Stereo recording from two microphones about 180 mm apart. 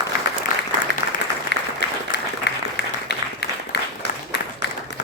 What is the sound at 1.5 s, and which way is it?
Applause, 70° left (ahead or behind).